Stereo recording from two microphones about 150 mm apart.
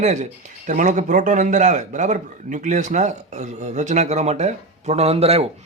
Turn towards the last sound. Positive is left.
turn(degrees=-45)  # may be behind; listen again after turning